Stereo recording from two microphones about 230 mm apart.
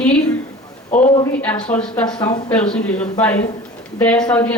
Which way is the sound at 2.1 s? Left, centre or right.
Centre.